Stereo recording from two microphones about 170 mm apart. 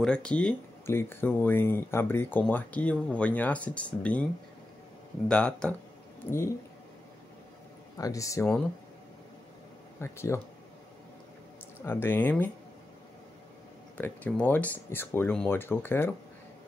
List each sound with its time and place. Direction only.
0.0 s speech: 5° left (ahead or behind)
5.3 s speech: 5° left (ahead or behind)
8.0 s speech: 20° left (ahead or behind)
9.9 s speech: 15° left (ahead or behind)
11.8 s speech: 15° left (ahead or behind)
13.9 s speech: 10° left (ahead or behind)